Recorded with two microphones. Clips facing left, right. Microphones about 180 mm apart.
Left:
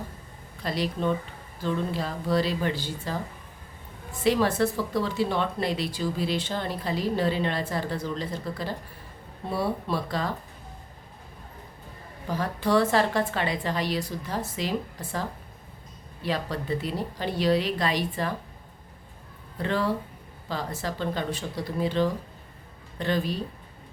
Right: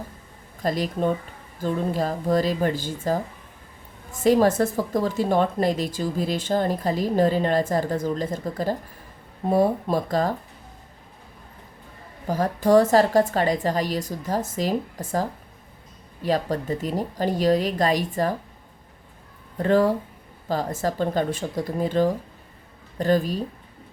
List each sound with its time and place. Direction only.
0.6 s speech: 45° right (ahead or behind)
12.3 s speech: 45° right (ahead or behind)
19.5 s speech: 45° right (ahead or behind)